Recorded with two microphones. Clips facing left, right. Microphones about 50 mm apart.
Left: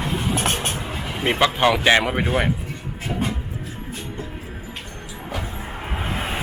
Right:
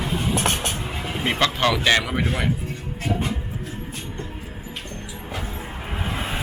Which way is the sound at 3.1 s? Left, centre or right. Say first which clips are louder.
Right 2 dB; left.